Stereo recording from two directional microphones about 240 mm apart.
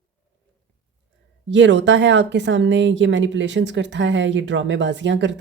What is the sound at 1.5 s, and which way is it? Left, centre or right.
Speech, right.